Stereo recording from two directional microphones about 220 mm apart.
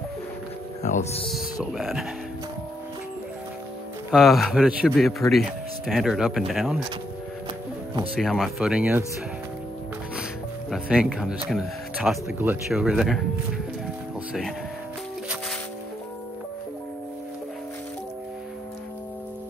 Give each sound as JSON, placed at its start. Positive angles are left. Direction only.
{"t": 0.8, "sound": "speech", "side_deg": 30}
{"t": 1.3, "sound": "speech", "side_deg": 0}
{"t": 4.1, "sound": "speech", "side_deg": 0}
{"t": 8.1, "sound": "speech", "side_deg": 0}
{"t": 10.7, "sound": "speech", "side_deg": 0}